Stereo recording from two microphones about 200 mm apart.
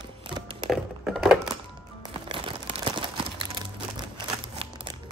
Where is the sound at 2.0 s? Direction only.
25° right (ahead or behind).